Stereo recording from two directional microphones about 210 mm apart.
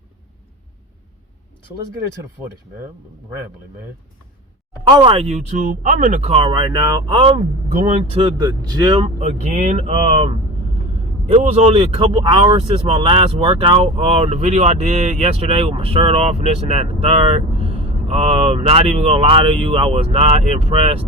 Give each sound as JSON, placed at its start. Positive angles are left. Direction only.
{"t": 3.2, "sound": "speech", "side_deg": -10}
{"t": 4.9, "sound": "speech", "side_deg": -20}
{"t": 9.1, "sound": "speech", "side_deg": -35}